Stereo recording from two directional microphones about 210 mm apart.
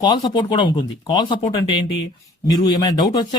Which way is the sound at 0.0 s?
20° left (ahead or behind).